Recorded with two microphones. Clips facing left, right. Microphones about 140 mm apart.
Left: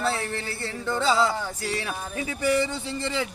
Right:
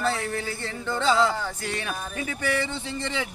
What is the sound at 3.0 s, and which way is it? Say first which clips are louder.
Speech: left 2 dB; 5° left (ahead or behind).